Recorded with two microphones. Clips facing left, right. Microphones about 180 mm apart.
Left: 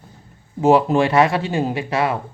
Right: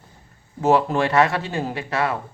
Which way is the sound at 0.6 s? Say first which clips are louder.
Left 4 dB; 15° left (ahead or behind).